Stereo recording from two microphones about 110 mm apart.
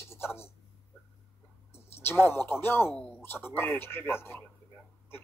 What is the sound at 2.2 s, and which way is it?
Speech, 20° left (ahead or behind).